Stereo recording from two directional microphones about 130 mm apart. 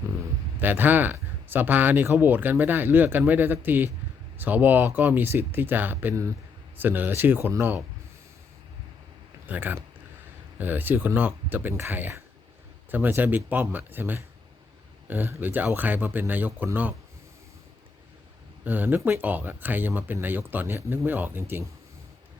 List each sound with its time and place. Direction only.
0.6 s speech: 15° right (ahead or behind)
9.5 s speech: 15° right (ahead or behind)
18.6 s speech: 15° right (ahead or behind)